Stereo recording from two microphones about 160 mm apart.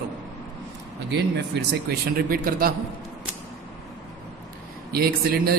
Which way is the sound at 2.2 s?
65° right (ahead or behind).